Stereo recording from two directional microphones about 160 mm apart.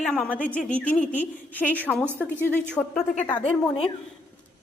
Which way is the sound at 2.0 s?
15° right (ahead or behind).